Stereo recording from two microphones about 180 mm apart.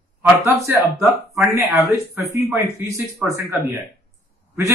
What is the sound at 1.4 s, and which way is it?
A man's voice, 5° right (ahead or behind).